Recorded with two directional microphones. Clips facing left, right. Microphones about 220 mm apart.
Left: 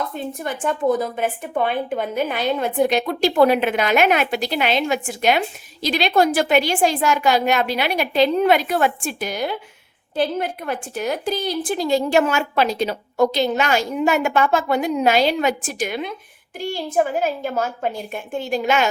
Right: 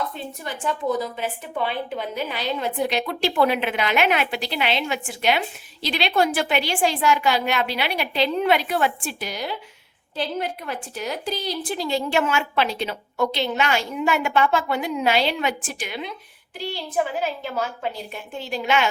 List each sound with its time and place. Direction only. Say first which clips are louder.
0.1 s a woman's voice: left 6 dB; 50° left (ahead or behind)